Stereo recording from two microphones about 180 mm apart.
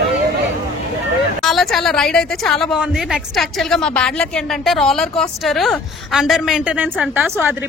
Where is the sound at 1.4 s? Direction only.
Centre (ahead or behind).